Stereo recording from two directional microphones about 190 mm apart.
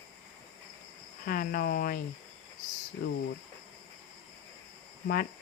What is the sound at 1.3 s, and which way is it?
Speech, 50° left (ahead or behind).